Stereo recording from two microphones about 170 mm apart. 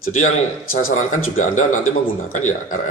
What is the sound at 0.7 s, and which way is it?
A man's voice, 50° left (ahead or behind).